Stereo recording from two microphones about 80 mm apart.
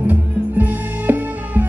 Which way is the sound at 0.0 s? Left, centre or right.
Right.